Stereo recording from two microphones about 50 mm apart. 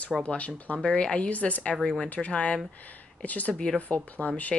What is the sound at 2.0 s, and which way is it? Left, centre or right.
Speech, left.